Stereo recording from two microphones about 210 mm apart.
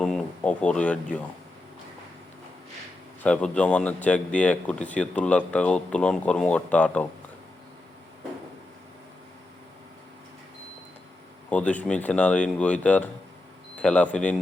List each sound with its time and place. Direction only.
0.0 s speech: 5° left (ahead or behind)
3.2 s speech: 5° left (ahead or behind)
11.4 s speech: 5° left (ahead or behind)